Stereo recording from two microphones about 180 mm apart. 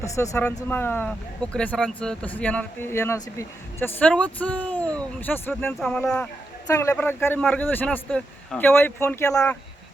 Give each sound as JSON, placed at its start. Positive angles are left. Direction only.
{"t": 0.0, "sound": "speech", "side_deg": 15}
{"t": 9.3, "sound": "speech", "side_deg": 5}